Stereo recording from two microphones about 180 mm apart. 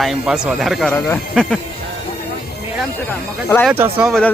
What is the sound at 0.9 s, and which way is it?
Speech, 10° left (ahead or behind).